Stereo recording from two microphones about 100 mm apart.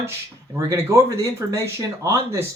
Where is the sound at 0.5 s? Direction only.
30° right (ahead or behind).